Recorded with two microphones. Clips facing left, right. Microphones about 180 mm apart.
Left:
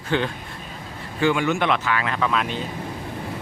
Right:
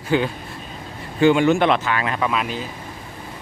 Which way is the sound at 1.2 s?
25° right (ahead or behind).